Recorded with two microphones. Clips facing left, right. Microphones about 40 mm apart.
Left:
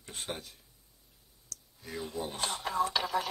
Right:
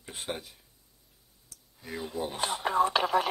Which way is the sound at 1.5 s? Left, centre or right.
Centre.